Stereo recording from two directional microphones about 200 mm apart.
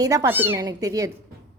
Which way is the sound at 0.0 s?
15° right (ahead or behind).